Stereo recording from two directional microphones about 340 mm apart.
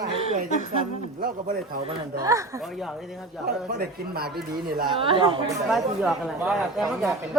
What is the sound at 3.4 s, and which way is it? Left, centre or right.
Speech, right.